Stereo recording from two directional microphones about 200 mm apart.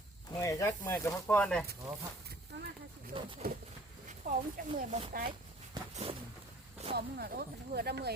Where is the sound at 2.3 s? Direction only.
50° right (ahead or behind).